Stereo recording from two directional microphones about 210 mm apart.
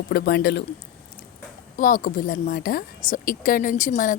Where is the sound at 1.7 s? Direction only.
40° left (ahead or behind).